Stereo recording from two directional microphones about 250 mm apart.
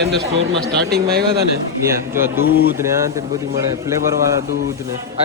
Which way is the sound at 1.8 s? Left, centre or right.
Centre.